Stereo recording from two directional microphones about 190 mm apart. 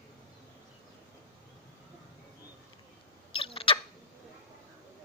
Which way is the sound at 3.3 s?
30° left (ahead or behind).